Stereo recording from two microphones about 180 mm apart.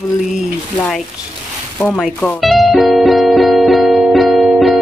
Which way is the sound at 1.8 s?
5° right (ahead or behind).